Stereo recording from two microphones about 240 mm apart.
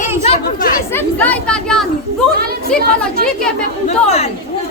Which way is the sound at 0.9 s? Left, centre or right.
Centre.